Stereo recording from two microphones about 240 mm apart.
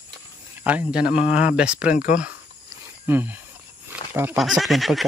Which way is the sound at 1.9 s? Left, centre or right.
Left.